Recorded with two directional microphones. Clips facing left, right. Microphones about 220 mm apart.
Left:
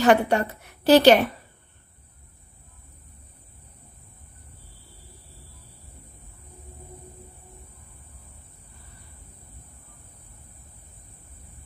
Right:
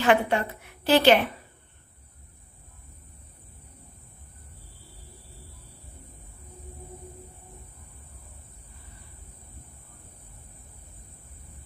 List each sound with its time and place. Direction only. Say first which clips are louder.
0.0 s a woman's voice: left 3 dB; 40° left (ahead or behind)